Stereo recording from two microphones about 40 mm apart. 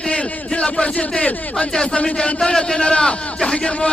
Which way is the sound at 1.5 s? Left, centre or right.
Centre.